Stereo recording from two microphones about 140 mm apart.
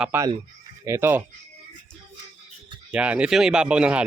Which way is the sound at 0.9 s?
15° right (ahead or behind).